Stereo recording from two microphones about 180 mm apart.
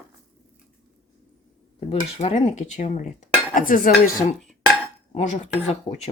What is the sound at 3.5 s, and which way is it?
Dishes, 50° left (ahead or behind).